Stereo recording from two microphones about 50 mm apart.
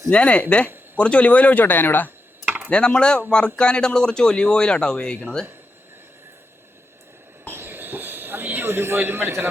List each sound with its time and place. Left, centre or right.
0.1 s speech: left
2.6 s speech: left
7.4 s a sound: right